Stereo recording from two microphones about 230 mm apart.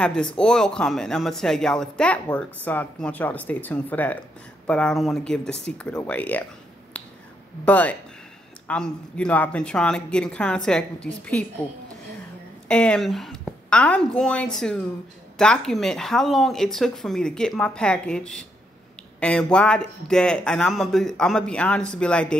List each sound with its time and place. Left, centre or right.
0.0 s speech: centre
7.6 s speech: centre
12.6 s a woman's voice: centre